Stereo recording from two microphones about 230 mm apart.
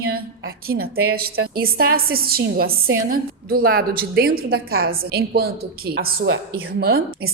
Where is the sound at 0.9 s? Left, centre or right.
Right.